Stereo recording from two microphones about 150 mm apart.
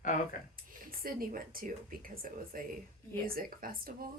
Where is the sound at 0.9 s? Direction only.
75° right (ahead or behind).